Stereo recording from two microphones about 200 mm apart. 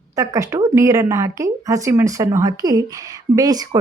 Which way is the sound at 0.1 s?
15° right (ahead or behind).